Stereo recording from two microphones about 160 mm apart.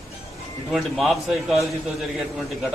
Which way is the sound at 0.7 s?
Centre (ahead or behind).